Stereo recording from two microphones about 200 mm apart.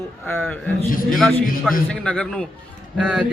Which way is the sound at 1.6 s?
Centre (ahead or behind).